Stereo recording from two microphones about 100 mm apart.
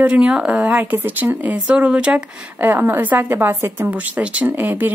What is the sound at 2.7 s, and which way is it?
A woman's voice, 20° right (ahead or behind).